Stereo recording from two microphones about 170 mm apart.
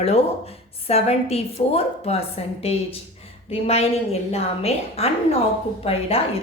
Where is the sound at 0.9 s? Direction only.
35° left (ahead or behind).